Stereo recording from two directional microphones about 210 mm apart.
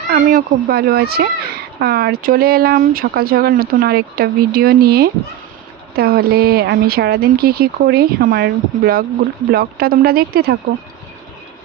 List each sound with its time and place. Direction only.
0.1 s speech: 40° right (ahead or behind)